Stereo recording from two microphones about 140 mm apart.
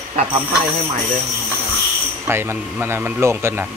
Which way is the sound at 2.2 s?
15° right (ahead or behind).